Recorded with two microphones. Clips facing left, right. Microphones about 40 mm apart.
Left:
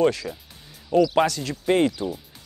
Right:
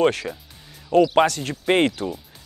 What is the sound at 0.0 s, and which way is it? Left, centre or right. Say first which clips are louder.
Speech: right 1 dB; right.